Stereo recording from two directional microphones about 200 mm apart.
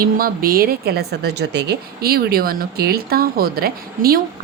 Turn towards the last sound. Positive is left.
turn(degrees=-50)  # may be behind; listen again after turning